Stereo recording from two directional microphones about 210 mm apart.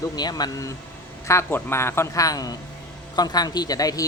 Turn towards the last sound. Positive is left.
turn(degrees=15)  # may be behind; listen again after turning